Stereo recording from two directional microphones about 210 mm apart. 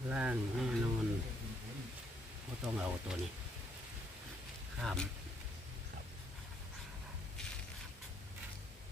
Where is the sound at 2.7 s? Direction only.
5° right (ahead or behind).